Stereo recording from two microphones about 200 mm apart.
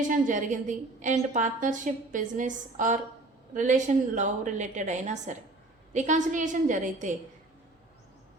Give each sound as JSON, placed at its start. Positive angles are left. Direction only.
{"t": 0.1, "sound": "a woman's voice", "side_deg": -40}